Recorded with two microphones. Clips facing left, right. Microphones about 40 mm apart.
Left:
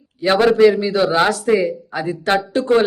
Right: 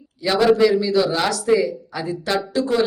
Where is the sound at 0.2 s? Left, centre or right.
Left.